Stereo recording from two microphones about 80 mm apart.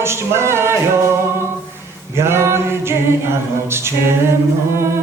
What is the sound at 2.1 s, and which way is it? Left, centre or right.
A capella, right.